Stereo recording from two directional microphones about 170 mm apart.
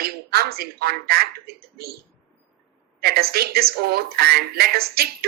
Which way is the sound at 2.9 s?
65° right (ahead or behind).